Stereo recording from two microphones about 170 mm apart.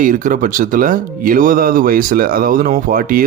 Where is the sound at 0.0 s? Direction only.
50° right (ahead or behind).